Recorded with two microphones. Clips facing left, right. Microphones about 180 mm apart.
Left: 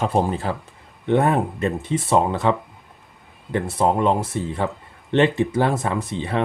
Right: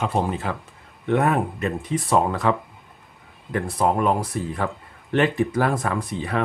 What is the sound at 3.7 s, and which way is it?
Speech, 25° left (ahead or behind).